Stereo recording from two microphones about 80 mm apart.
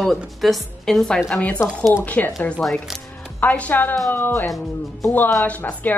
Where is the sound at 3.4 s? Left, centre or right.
Centre.